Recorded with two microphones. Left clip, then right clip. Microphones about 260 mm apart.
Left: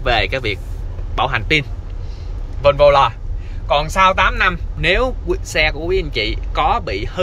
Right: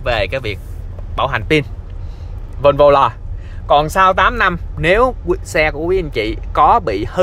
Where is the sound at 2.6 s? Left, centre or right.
Right.